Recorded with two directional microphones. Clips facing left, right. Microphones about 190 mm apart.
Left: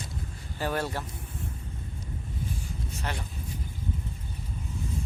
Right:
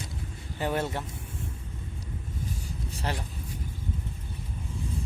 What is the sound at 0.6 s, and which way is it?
Speech, 20° right (ahead or behind).